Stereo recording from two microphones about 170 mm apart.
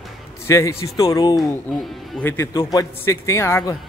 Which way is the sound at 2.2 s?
15° left (ahead or behind).